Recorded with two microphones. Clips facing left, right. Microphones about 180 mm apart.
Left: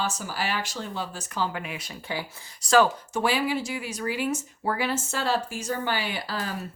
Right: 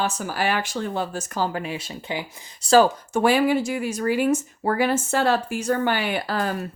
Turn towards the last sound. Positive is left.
turn(degrees=-55)  # may be behind; listen again after turning